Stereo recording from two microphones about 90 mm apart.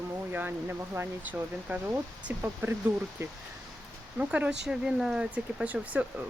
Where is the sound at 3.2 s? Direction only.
30° right (ahead or behind).